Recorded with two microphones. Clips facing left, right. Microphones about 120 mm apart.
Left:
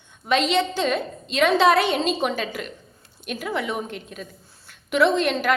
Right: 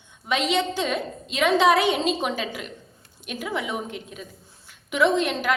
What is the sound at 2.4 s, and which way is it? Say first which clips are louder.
Speech: left 2 dB; 60° left (ahead or behind).